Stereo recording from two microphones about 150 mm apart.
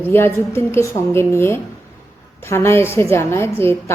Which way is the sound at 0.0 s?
15° left (ahead or behind).